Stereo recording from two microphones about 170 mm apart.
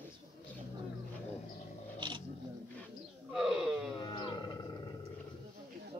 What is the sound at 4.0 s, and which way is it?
Music, 25° left (ahead or behind).